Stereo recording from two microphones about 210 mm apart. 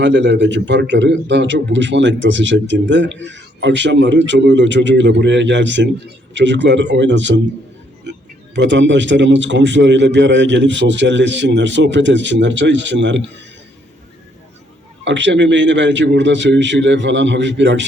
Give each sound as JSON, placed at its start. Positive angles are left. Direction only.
{"t": 0.0, "sound": "a man's voice", "side_deg": -60}
{"t": 8.5, "sound": "a man's voice", "side_deg": -60}
{"t": 15.0, "sound": "a man's voice", "side_deg": -60}